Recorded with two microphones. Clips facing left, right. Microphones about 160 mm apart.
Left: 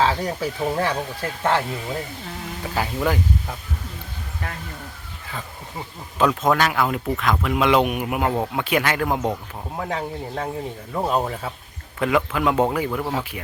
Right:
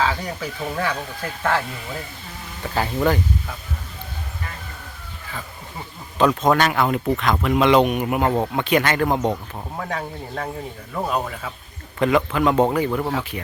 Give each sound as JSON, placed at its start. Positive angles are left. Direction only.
{"t": 0.0, "sound": "speech", "side_deg": 30}
{"t": 2.7, "sound": "speech", "side_deg": 10}
{"t": 6.1, "sound": "speech", "side_deg": 0}
{"t": 11.9, "sound": "speech", "side_deg": 5}